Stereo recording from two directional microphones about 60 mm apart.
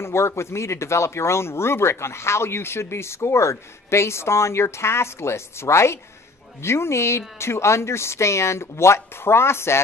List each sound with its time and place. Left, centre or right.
0.0 s speech: left